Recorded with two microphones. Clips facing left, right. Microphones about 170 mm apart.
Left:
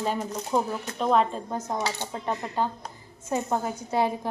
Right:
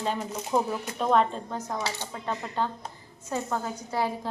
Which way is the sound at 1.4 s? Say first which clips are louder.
Left 3 dB; 20° left (ahead or behind).